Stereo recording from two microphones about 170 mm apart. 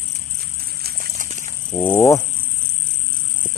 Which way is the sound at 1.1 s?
50° right (ahead or behind).